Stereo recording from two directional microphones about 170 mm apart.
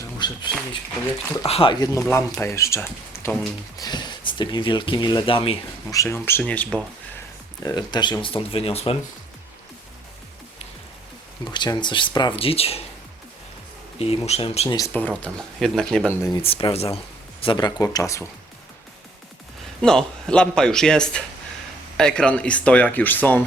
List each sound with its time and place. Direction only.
0.2 s a sound: 25° left (ahead or behind)
1.5 s speech: 35° left (ahead or behind)
5.9 s speech: 15° left (ahead or behind)
7.6 s speech: 25° left (ahead or behind)
11.5 s speech: 25° left (ahead or behind)
14.0 s speech: 35° left (ahead or behind)
14.9 s a man's voice: 10° left (ahead or behind)
16.4 s speech: 35° left (ahead or behind); by 18.3 s 20° left (ahead or behind)
19.8 s a man's voice: 5° left (ahead or behind)